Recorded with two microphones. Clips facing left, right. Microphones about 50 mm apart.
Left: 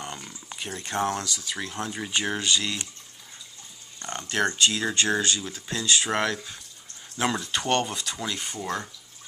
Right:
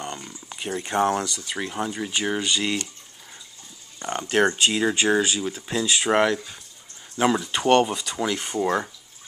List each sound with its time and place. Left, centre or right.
0.0 s a sound: centre
0.5 s speech: centre
4.0 s speech: centre
8.2 s speech: centre